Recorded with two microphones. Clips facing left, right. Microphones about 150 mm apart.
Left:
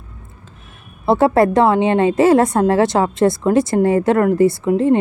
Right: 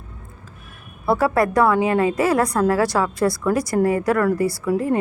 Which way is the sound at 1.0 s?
25° left (ahead or behind).